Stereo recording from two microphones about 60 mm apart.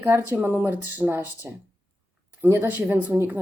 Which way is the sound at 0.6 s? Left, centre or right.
Right.